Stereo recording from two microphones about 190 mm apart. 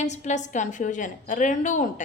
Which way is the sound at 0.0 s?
40° left (ahead or behind).